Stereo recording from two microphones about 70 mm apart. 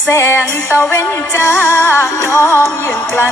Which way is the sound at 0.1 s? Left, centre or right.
Left.